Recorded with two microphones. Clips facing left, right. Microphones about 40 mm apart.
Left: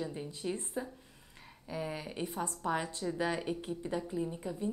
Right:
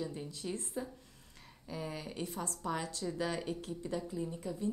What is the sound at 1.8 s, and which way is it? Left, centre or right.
A woman's voice, left.